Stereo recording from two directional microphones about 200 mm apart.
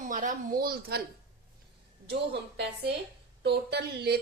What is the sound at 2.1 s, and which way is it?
A woman's voice, 60° right (ahead or behind).